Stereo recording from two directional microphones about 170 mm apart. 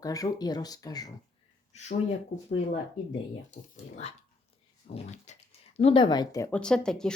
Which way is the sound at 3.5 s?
40° left (ahead or behind).